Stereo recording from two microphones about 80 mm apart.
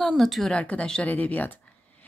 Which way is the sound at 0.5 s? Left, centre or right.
Centre.